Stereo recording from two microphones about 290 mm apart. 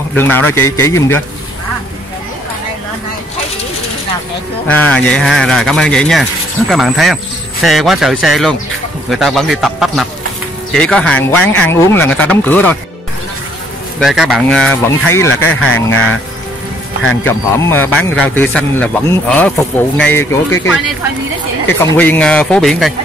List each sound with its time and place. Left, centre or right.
0.1 s a man's voice: centre
4.6 s speech: centre
13.9 s speech: centre
15.6 s speech: left
17.0 s speech: left
17.3 s a man's voice: centre
21.7 s speech: centre